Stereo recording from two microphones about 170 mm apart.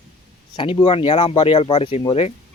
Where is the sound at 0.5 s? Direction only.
30° left (ahead or behind).